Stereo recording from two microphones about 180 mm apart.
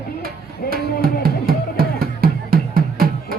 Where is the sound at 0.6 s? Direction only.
60° left (ahead or behind).